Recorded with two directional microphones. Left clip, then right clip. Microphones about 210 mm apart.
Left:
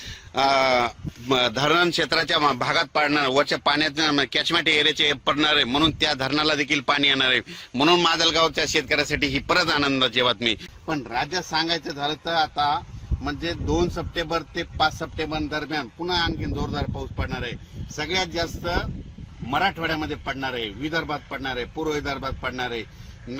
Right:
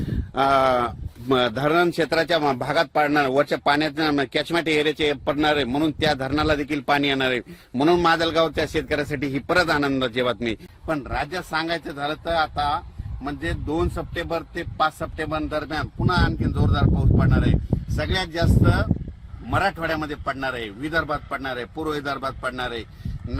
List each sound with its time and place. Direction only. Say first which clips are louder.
0.3 s speech: right 1 dB; 50° right (ahead or behind)
11.1 s a man's voice: left 1 dB; 10° right (ahead or behind)